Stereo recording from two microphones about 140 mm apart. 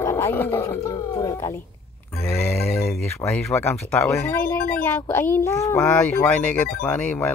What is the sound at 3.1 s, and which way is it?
Speech, 15° left (ahead or behind).